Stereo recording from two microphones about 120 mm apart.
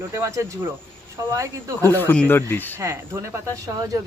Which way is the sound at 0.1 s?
25° right (ahead or behind).